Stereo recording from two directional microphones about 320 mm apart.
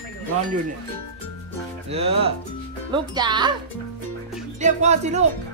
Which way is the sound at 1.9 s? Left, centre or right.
Centre.